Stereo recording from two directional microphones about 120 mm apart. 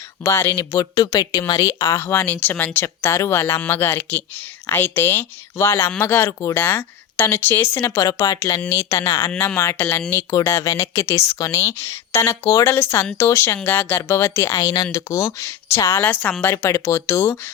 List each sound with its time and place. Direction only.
0.2 s speech: 20° left (ahead or behind)